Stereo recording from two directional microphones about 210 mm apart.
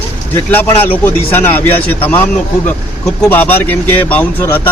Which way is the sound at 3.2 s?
10° left (ahead or behind).